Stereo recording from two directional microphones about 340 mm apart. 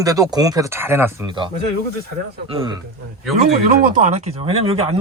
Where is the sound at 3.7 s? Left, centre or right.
Centre.